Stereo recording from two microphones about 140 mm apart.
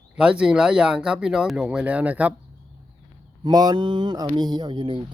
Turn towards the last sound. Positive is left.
turn(degrees=-35)  # may be behind; listen again after turning